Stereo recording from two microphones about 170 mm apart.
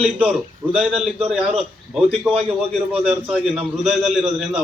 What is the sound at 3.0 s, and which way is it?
A man's voice, 5° right (ahead or behind).